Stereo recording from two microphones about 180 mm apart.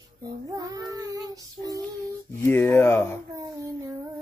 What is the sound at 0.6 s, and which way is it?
Child singing, 20° right (ahead or behind).